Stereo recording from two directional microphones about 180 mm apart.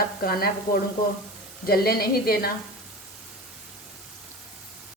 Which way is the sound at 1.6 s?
60° left (ahead or behind).